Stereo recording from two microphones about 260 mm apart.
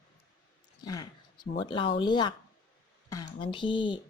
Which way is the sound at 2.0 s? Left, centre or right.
Centre.